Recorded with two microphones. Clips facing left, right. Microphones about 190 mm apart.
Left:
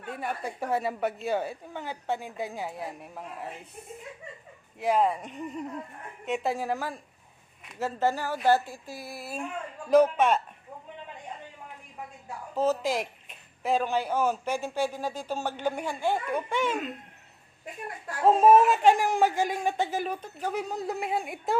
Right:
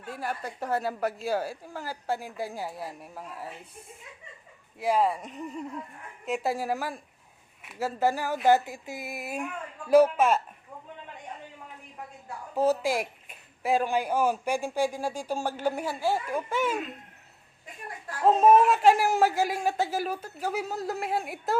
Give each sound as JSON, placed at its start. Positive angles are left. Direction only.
{"t": 0.1, "sound": "a woman's voice", "side_deg": -5}
{"t": 4.8, "sound": "a woman's voice", "side_deg": -5}
{"t": 12.5, "sound": "speech", "side_deg": -10}
{"t": 18.3, "sound": "a woman's voice", "side_deg": 5}